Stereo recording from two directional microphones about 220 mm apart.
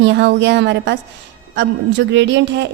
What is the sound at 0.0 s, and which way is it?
A woman's voice, 55° right (ahead or behind).